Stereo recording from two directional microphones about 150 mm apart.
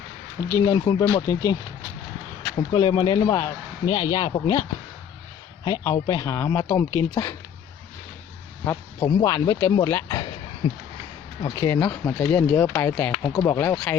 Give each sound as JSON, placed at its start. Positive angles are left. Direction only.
{"t": 0.3, "sound": "speech", "side_deg": 15}
{"t": 2.6, "sound": "speech", "side_deg": 30}
{"t": 5.6, "sound": "speech", "side_deg": 25}
{"t": 8.6, "sound": "speech", "side_deg": 20}
{"t": 10.6, "sound": "a sound", "side_deg": 40}
{"t": 11.4, "sound": "speech", "side_deg": 20}